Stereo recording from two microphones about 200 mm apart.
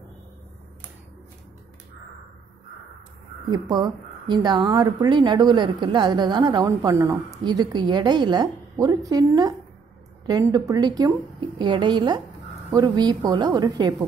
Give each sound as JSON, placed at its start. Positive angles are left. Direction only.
{"t": 3.4, "sound": "a woman's voice", "side_deg": -20}